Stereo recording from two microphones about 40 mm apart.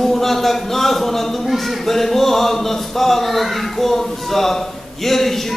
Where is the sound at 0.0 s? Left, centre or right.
Centre.